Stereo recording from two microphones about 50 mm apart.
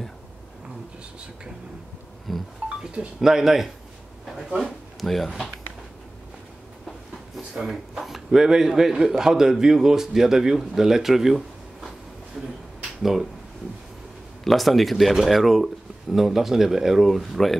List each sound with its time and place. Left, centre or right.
2.3 s speech: centre
2.8 s speech: centre
5.0 s speech: centre
7.3 s speech: centre
14.4 s speech: centre